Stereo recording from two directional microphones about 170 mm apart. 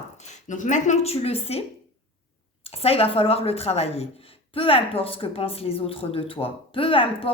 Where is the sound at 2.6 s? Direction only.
35° left (ahead or behind).